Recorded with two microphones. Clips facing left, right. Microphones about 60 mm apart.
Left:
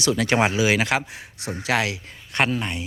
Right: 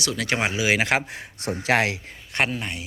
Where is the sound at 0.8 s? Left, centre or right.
Right.